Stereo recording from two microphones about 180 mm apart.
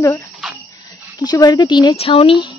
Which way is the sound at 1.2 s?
20° left (ahead or behind).